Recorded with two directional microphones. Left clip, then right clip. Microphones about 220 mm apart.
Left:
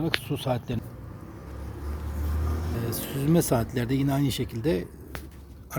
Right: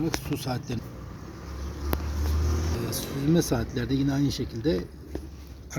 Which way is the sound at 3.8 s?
45° left (ahead or behind).